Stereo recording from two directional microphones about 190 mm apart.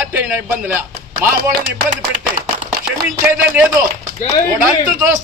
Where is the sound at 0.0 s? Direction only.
10° right (ahead or behind).